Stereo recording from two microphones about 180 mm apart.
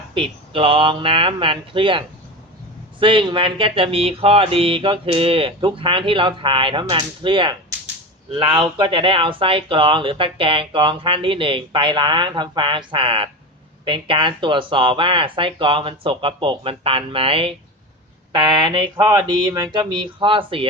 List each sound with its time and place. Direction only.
0.1 s speech: 30° right (ahead or behind)